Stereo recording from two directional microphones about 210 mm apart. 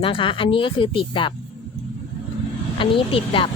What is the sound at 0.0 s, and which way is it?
A woman's voice, 25° left (ahead or behind).